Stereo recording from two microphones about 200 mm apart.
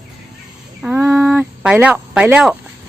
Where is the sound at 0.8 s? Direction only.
5° right (ahead or behind).